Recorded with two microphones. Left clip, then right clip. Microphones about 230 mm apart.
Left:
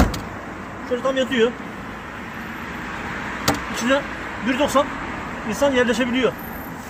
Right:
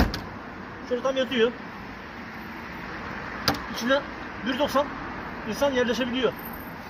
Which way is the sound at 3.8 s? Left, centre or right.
Centre.